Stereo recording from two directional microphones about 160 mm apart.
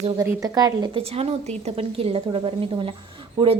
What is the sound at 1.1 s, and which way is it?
Speech, 40° right (ahead or behind).